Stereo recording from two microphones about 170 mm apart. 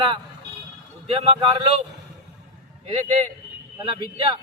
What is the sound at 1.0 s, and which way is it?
Speech, 35° right (ahead or behind).